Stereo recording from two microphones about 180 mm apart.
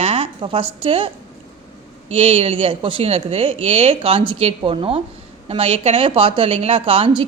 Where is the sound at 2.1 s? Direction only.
30° right (ahead or behind).